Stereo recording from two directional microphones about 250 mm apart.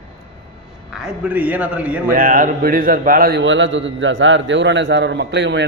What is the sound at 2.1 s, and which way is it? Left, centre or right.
A man's voice, right.